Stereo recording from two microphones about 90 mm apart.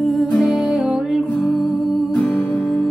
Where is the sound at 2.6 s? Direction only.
Centre (ahead or behind).